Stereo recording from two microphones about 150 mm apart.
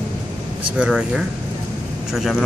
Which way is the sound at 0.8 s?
5° right (ahead or behind).